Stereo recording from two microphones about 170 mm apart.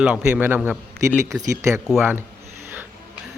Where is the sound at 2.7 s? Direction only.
10° right (ahead or behind).